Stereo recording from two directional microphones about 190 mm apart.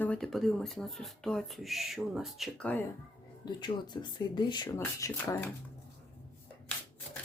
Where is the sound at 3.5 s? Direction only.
25° left (ahead or behind).